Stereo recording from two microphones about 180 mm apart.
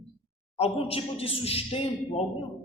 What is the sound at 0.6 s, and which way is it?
A man's voice, 35° left (ahead or behind).